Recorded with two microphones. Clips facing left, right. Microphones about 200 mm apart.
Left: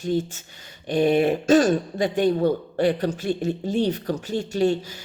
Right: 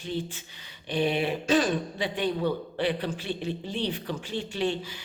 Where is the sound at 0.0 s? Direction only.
45° left (ahead or behind).